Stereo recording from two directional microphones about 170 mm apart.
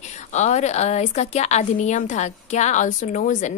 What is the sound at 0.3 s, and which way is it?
A woman's voice, 45° left (ahead or behind).